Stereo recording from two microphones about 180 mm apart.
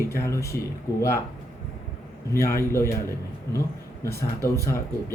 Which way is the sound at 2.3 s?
15° left (ahead or behind).